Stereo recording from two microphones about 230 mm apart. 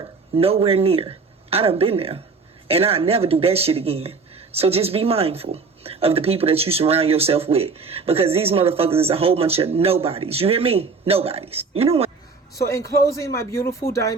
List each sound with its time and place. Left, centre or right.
0.0 s speech: right
12.6 s speech: centre